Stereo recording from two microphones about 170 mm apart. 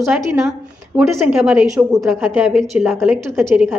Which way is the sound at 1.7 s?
20° right (ahead or behind).